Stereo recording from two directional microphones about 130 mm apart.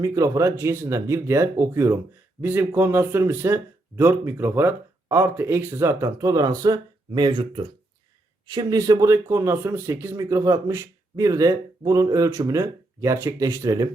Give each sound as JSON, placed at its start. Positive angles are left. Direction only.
{"t": 0.0, "sound": "a man's voice", "side_deg": -25}